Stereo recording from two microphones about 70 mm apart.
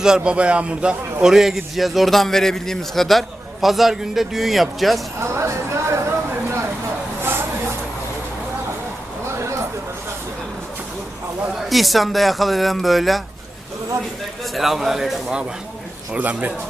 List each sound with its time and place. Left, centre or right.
0.3 s a man's voice: centre
5.2 s speech: right
7.2 s a sound: right
11.7 s a man's voice: centre
14.5 s a man's voice: centre
16.1 s a man's voice: right